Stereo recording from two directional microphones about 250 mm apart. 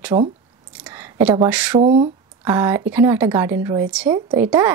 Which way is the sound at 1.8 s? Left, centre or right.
Right.